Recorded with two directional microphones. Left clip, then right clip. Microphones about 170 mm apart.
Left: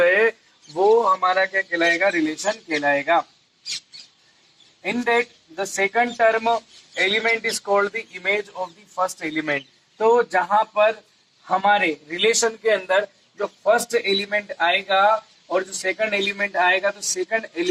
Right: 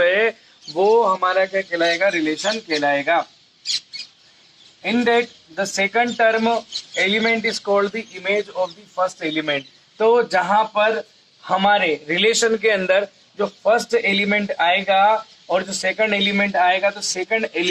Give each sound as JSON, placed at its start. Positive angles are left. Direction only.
{"t": 0.0, "sound": "a sound", "side_deg": -20}
{"t": 1.1, "sound": "speech", "side_deg": -20}
{"t": 4.8, "sound": "speech", "side_deg": -20}